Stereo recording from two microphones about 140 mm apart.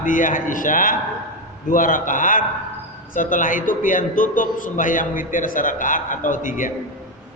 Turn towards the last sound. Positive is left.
turn(degrees=70)  # may be behind; listen again after turning